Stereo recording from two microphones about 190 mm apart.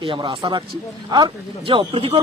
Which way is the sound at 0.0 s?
25° right (ahead or behind).